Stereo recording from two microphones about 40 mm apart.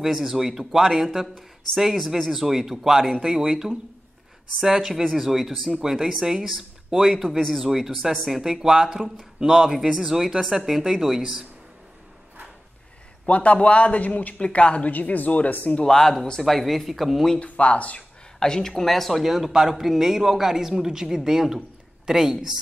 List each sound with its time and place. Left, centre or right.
0.0 s a man's voice: centre
5.7 s a man's voice: centre
13.3 s speech: left
15.8 s speech: centre
17.4 s speech: left
18.4 s a man's voice: centre